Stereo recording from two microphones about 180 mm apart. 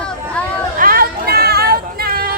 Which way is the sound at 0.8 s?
55° right (ahead or behind).